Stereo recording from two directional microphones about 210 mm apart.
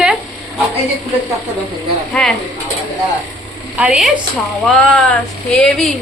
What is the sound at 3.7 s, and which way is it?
Speech, 5° right (ahead or behind).